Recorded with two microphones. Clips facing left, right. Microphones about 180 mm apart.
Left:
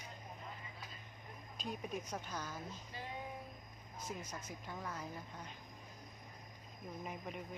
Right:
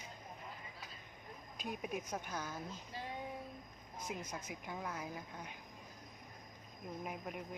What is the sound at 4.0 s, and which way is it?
A woman's voice, 10° right (ahead or behind).